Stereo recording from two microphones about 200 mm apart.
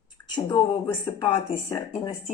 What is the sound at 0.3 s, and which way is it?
Speech, 20° left (ahead or behind).